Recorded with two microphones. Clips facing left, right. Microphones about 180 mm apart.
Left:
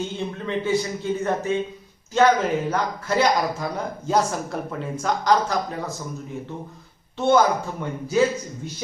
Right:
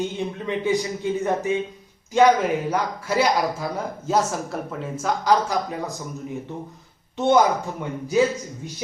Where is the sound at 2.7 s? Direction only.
10° right (ahead or behind).